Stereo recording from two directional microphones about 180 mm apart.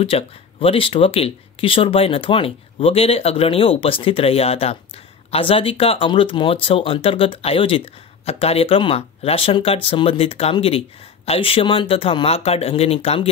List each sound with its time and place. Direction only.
0.0 s speech: 30° left (ahead or behind)